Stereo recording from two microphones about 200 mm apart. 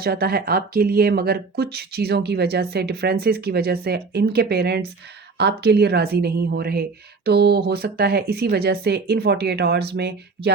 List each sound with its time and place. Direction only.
0.0 s speech: 50° right (ahead or behind)